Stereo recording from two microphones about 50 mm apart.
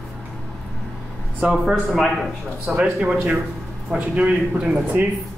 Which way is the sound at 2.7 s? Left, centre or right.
Right.